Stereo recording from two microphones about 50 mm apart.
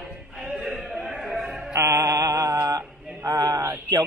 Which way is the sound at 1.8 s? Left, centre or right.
Right.